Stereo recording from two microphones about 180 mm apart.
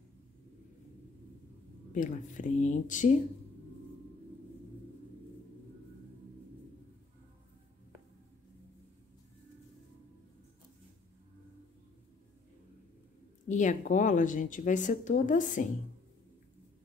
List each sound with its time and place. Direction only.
1.9 s speech: 45° left (ahead or behind)
13.5 s speech: 45° left (ahead or behind)